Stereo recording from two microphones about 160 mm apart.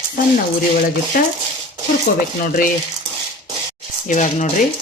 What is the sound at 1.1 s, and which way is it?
Speech, 65° left (ahead or behind).